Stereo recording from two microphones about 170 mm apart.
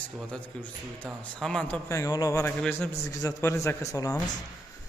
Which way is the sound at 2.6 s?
5° left (ahead or behind).